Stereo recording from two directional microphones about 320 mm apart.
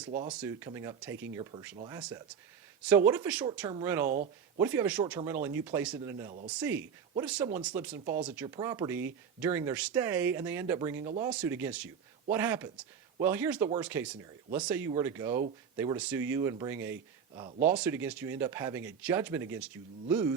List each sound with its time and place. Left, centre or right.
0.3 s speech: centre
4.1 s speech: right
4.6 s speech: centre